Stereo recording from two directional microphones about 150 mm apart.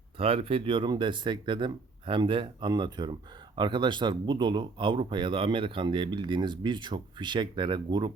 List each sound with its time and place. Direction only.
0.2 s speech: 40° right (ahead or behind)